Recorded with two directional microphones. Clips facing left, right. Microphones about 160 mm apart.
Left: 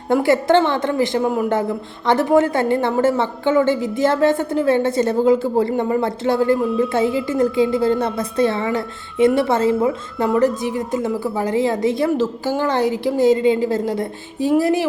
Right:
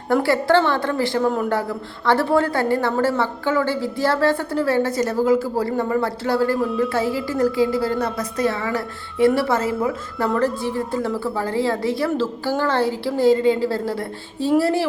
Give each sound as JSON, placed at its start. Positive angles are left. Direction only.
{"t": 0.1, "sound": "a woman's voice", "side_deg": 20}